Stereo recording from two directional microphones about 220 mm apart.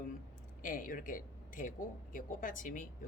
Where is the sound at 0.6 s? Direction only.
40° left (ahead or behind).